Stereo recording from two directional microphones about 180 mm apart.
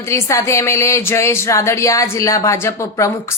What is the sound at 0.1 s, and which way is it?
Speech, 15° left (ahead or behind).